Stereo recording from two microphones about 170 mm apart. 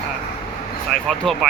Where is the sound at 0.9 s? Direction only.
5° left (ahead or behind).